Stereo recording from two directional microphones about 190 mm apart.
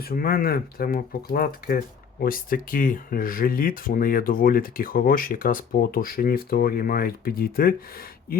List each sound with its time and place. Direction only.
0.0 s speech: 50° left (ahead or behind)